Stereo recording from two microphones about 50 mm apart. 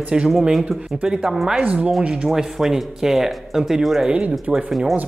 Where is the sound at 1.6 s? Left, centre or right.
Right.